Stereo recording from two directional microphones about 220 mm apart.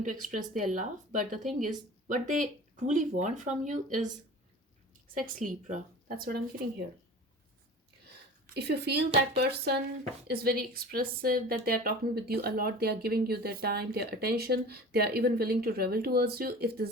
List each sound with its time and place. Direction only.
0.0 s speech: 35° right (ahead or behind)
5.5 s speech: 35° right (ahead or behind)
8.5 s speech: 50° right (ahead or behind)